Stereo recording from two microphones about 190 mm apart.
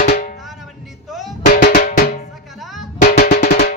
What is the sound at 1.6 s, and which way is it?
Drum, 55° left (ahead or behind).